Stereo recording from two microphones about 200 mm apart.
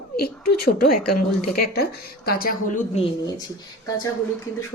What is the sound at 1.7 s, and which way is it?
Speech, 50° left (ahead or behind).